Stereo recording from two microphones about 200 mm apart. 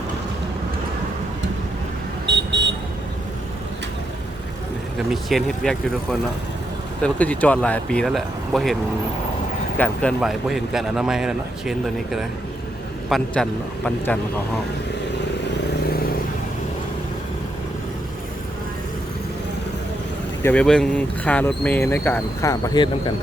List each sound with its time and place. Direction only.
2.2 s vehicle: 60° right (ahead or behind)
4.9 s speech: centre (ahead or behind)
20.4 s speech: 5° left (ahead or behind); by 23.1 s 20° left (ahead or behind)